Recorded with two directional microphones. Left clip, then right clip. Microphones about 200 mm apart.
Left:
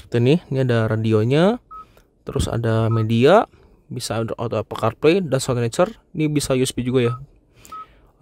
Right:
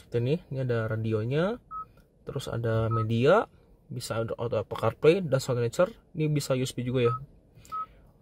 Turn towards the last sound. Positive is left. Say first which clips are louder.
# even
turn(degrees=30)  # may be behind; listen again after turning